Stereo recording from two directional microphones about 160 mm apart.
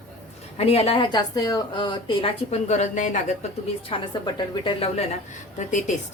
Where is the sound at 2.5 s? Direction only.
45° left (ahead or behind).